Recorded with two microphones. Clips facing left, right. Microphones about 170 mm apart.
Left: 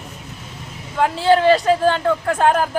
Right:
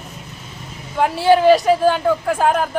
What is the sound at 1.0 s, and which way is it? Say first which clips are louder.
Speech: right 1 dB; 15° right (ahead or behind).